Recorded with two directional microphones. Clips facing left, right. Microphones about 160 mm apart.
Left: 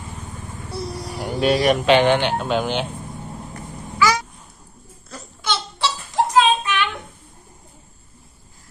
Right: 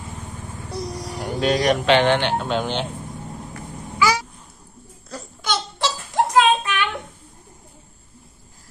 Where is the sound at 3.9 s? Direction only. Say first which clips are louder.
Left 1 dB; 10° right (ahead or behind).